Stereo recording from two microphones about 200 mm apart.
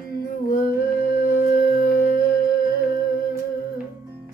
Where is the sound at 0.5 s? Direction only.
45° left (ahead or behind).